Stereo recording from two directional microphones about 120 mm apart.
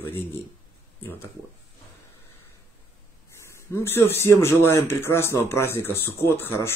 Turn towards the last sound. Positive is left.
turn(degrees=20)  # may be behind; listen again after turning